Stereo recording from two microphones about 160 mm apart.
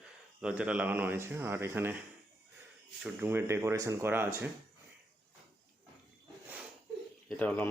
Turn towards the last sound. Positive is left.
turn(degrees=10)  # may be behind; listen again after turning